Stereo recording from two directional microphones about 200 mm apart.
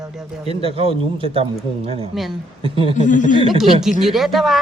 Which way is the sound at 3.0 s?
40° left (ahead or behind).